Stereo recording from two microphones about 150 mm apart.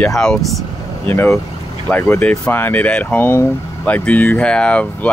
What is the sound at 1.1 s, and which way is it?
Speech, 15° left (ahead or behind).